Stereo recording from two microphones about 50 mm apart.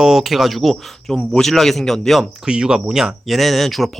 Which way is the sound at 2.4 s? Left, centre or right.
Centre.